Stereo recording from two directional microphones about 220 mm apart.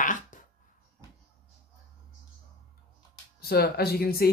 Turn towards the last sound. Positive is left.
turn(degrees=45)  # may be behind; listen again after turning